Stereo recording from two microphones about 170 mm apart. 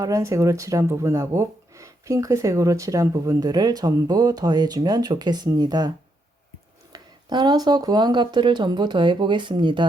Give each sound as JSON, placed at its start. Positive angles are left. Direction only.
{"t": 0.0, "sound": "speech", "side_deg": -20}
{"t": 6.9, "sound": "speech", "side_deg": -25}